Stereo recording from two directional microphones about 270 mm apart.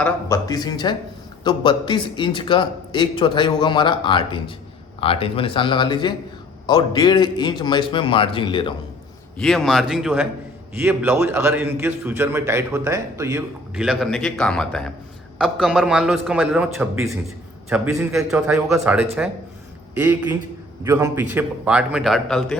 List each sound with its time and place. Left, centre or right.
0.0 s a man's voice: centre
9.4 s a man's voice: centre